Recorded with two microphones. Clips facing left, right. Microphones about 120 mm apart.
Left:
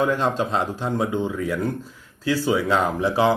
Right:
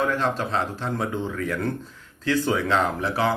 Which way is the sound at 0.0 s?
15° left (ahead or behind).